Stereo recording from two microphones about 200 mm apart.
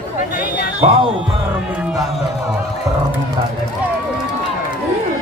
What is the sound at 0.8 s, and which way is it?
Speech, 30° right (ahead or behind).